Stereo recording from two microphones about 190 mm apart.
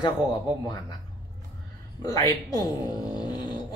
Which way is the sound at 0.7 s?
20° left (ahead or behind).